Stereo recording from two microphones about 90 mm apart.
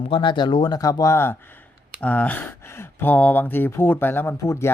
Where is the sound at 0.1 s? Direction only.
60° left (ahead or behind).